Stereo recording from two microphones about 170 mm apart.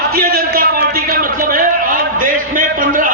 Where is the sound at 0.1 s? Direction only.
60° right (ahead or behind).